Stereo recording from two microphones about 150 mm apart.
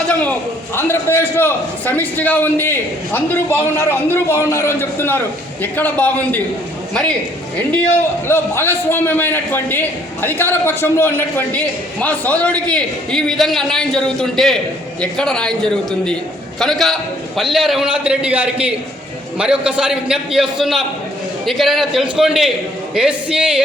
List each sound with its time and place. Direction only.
0.1 s a sound: 10° left (ahead or behind)
0.8 s a man's voice: 15° left (ahead or behind)
8.3 s a man's voice: 15° left (ahead or behind); by 23.6 s 5° right (ahead or behind)